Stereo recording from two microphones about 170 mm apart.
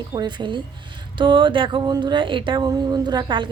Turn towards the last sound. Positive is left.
turn(degrees=-25)  # may be behind; listen again after turning